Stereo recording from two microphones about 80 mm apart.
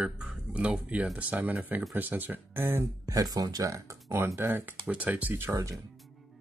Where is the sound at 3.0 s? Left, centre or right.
Right.